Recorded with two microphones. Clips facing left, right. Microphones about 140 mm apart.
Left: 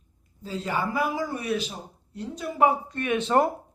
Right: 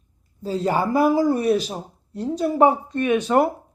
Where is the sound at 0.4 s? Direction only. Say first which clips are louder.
Right 7 dB; 40° right (ahead or behind).